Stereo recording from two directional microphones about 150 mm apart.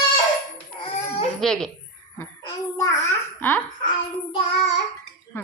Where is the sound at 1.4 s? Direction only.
5° left (ahead or behind).